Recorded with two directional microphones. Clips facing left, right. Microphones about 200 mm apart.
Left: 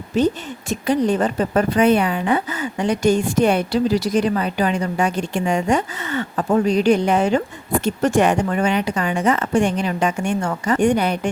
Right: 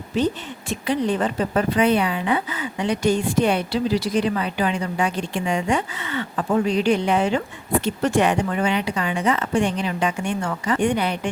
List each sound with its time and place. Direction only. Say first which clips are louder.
0.1 s a woman's voice: left 4 dB; 45° left (ahead or behind)